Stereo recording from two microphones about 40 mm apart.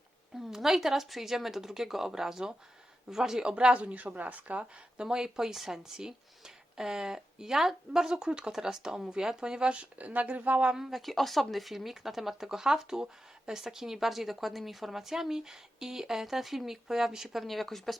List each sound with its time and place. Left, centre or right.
0.3 s speech: centre
3.4 s speech: right
4.9 s speech: centre
10.0 s speech: right
10.8 s speech: centre
11.0 s speech: centre